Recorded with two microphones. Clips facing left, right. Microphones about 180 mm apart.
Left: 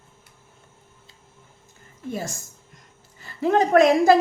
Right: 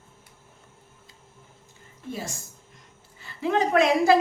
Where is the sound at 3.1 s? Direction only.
45° left (ahead or behind).